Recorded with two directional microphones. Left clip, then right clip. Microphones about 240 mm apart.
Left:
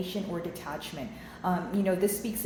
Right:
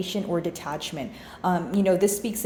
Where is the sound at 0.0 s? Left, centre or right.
Right.